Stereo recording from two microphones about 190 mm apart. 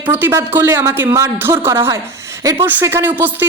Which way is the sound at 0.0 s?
10° right (ahead or behind).